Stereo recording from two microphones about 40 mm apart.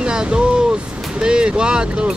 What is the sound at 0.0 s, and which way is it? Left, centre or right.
Vehicle, right.